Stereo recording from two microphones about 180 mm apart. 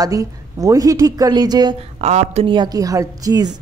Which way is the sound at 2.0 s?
35° right (ahead or behind).